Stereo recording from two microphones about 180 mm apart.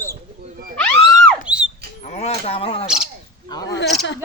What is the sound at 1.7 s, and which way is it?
Speech, 35° left (ahead or behind).